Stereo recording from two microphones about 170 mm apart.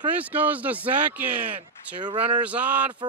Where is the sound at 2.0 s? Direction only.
30° right (ahead or behind).